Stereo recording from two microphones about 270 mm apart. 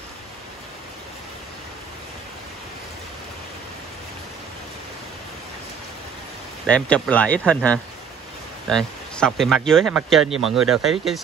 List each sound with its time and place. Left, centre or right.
6.6 s speech: centre